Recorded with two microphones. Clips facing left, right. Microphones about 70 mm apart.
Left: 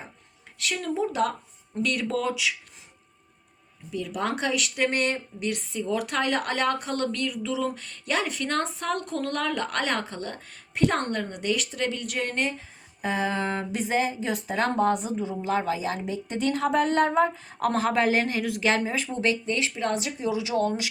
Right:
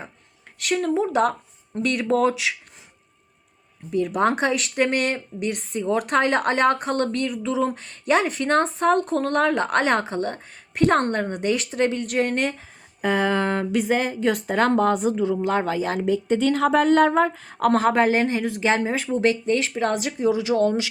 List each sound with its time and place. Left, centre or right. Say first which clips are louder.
0.8 s a woman's voice: right 5 dB; right
3.9 s a woman's voice: right 8 dB; right
13.0 s speech: right 6 dB; right
14.3 s speech: right 6 dB; right
16.0 s speech: right 9 dB; right
17.6 s a woman's voice: right 5 dB; right
19.9 s speech: right 4 dB; right